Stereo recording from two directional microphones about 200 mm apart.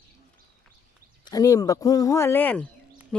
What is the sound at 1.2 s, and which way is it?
Speech, 20° left (ahead or behind).